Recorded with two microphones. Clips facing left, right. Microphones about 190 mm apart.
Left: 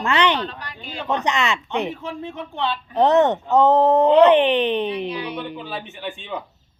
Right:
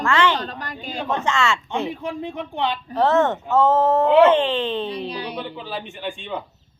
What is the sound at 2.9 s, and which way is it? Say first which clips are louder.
Speech: left 3 dB; 20° left (ahead or behind).